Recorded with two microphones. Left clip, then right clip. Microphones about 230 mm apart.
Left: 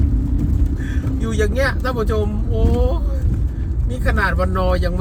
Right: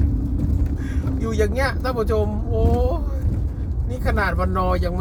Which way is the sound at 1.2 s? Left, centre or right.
Centre.